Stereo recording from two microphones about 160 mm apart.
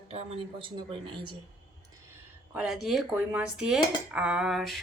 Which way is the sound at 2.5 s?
5° right (ahead or behind).